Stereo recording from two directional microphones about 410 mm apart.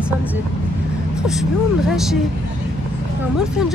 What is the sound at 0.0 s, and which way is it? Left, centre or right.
Speech, centre.